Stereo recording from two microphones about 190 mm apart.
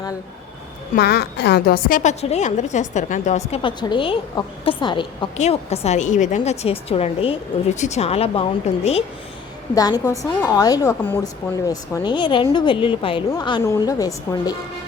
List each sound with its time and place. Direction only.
0.9 s a woman's voice: 55° left (ahead or behind); by 9.0 s 35° left (ahead or behind)
9.7 s a woman's voice: 20° left (ahead or behind)